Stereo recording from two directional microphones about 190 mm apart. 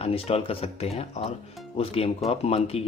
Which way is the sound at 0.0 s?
30° left (ahead or behind).